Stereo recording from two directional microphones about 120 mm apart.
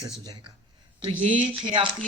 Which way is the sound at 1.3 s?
90° right.